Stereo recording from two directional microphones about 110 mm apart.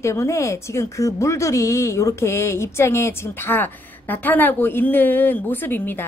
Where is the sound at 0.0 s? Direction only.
25° left (ahead or behind).